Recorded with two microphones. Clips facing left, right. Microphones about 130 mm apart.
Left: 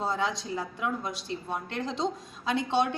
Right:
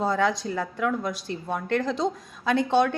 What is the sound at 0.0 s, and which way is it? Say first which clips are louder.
A woman's voice: right 6 dB; 55° right (ahead or behind).